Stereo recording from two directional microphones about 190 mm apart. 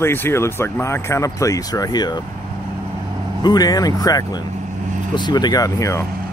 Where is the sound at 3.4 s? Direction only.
20° left (ahead or behind).